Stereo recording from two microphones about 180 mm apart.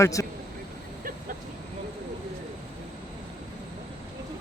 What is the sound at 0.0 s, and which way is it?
Speech, 15° left (ahead or behind).